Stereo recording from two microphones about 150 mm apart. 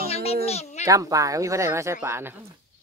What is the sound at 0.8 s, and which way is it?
Speech, 20° right (ahead or behind).